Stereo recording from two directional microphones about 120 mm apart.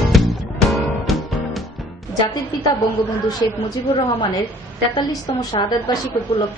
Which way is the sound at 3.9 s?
50° left (ahead or behind).